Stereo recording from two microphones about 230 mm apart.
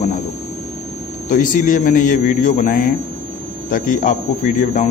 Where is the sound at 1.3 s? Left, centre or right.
Left.